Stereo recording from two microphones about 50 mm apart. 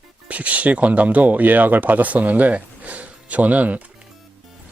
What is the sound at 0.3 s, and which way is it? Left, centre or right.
Speech, right.